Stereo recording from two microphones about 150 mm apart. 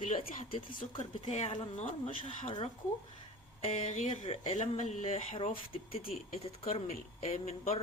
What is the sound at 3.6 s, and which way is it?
Speech, 45° left (ahead or behind).